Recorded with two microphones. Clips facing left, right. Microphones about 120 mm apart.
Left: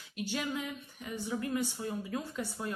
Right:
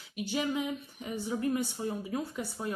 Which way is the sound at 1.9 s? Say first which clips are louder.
Right 2 dB; 25° right (ahead or behind).